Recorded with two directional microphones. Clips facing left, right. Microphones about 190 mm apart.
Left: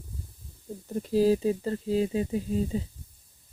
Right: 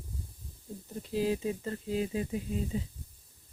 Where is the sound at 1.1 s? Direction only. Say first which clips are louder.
Left 8 dB; 35° left (ahead or behind).